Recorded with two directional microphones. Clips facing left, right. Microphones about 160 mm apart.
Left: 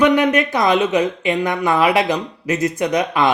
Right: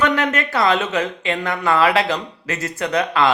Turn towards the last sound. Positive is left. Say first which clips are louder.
# left 1 dB
turn(degrees=15)  # may be behind; listen again after turning